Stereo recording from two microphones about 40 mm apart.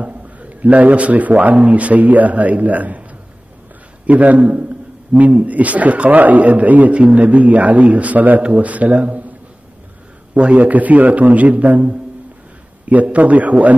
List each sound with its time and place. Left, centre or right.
0.0 s a man's voice: right
4.0 s a man's voice: right
10.3 s a man's voice: right